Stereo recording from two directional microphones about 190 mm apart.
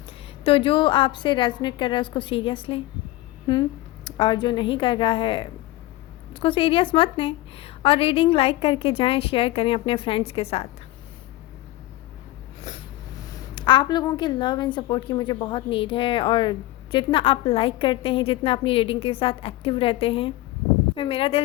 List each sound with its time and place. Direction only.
0.4 s a woman's voice: 25° left (ahead or behind)
13.6 s a woman's voice: 25° left (ahead or behind)